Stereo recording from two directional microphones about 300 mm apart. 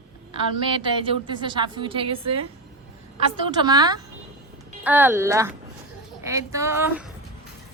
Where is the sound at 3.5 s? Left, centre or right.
Centre.